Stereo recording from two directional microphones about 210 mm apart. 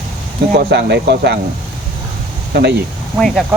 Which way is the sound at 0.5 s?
55° right (ahead or behind).